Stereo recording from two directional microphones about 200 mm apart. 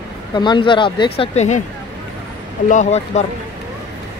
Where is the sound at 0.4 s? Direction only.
25° left (ahead or behind).